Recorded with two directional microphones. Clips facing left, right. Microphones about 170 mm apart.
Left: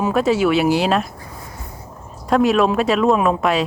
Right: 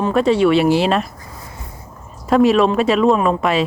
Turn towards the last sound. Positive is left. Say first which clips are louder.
# right 1 dB
turn(degrees=0)  # may be behind; listen again after turning